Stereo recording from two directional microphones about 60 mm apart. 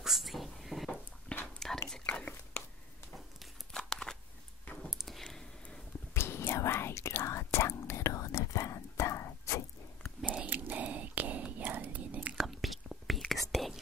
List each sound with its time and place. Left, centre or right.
0.0 s a sound: centre
1.4 s whispering: centre
2.0 s whispering: left
3.7 s a sound: centre
6.1 s whispering: left
10.4 s whispering: right
12.4 s whispering: centre